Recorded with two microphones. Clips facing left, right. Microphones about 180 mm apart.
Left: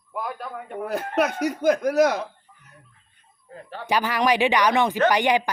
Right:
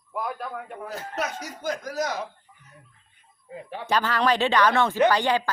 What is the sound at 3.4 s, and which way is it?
Speech, 10° right (ahead or behind).